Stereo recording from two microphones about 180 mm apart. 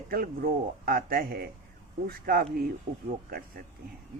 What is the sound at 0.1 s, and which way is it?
A man's voice, 55° right (ahead or behind).